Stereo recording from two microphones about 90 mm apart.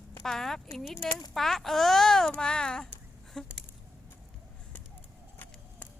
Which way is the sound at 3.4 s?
5° left (ahead or behind).